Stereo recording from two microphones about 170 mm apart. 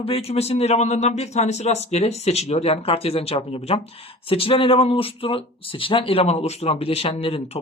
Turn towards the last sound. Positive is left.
turn(degrees=35)  # may be behind; listen again after turning